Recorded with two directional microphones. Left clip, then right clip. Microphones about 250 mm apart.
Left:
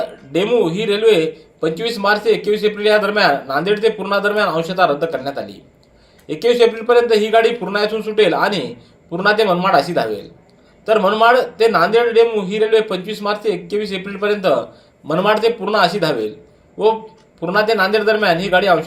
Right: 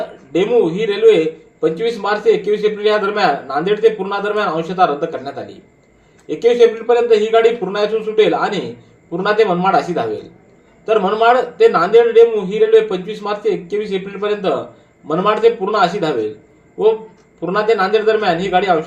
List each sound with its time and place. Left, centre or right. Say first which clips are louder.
0.3 s a man's voice: right 2 dB; left
17.4 s a man's voice: even; left